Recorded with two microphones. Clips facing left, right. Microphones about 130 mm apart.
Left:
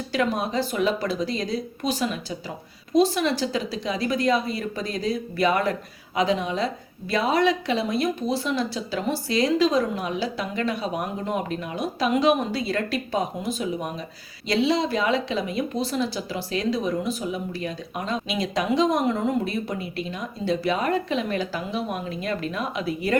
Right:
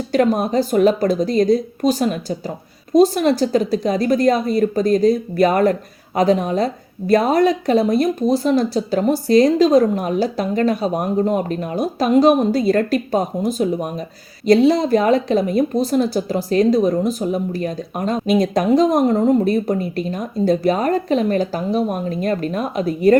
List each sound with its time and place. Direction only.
0.1 s speech: 45° right (ahead or behind)